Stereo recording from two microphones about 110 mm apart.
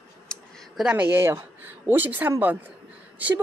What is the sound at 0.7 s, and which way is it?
A woman's voice, 10° right (ahead or behind).